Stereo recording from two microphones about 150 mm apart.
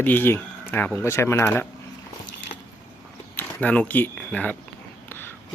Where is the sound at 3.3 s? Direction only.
10° left (ahead or behind).